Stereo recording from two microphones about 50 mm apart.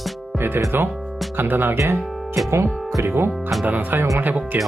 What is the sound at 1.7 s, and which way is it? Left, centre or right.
Speech, right.